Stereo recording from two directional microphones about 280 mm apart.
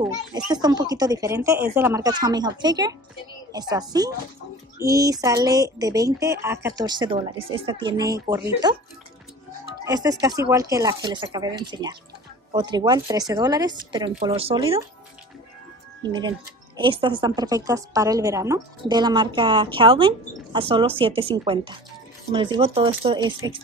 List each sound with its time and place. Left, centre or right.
0.5 s speech: centre
9.8 s speech: centre
16.1 s speech: centre